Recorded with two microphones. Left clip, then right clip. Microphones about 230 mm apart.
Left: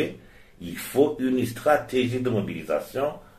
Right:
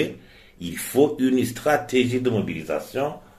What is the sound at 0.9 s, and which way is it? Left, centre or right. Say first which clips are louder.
Speech: right 3 dB; right.